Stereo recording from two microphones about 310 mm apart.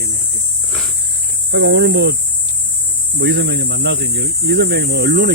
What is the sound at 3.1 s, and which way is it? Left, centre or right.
Speech, right.